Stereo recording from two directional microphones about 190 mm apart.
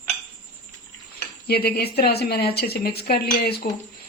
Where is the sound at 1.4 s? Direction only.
55° left (ahead or behind).